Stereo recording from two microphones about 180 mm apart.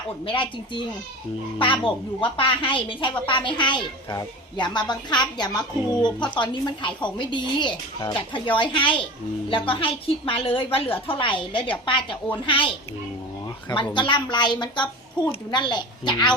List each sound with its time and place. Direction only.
0.3 s a woman's voice: 25° left (ahead or behind)
13.9 s a woman's voice: 25° left (ahead or behind)